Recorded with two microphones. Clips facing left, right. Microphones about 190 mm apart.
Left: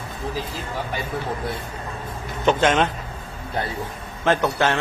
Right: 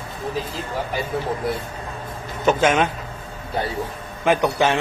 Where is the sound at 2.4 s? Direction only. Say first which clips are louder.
Right 1 dB; 5° right (ahead or behind).